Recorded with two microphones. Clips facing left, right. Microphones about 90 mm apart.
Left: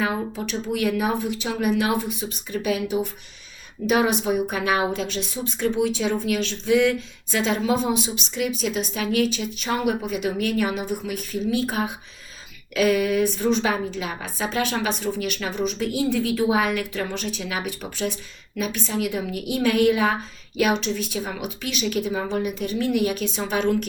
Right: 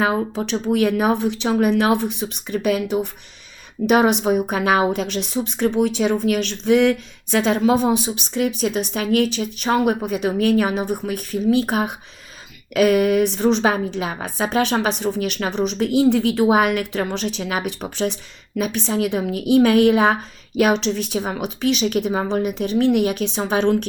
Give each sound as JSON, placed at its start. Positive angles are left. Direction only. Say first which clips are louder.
{"t": 0.0, "sound": "a woman's voice", "louder": "right 5 dB", "side_deg": -65}
{"t": 1.5, "sound": "speech", "louder": "right 7 dB", "side_deg": -50}
{"t": 1.8, "sound": "a woman's voice", "louder": "right 5 dB", "side_deg": -65}
{"t": 3.8, "sound": "a woman's voice", "louder": "right 5 dB", "side_deg": -65}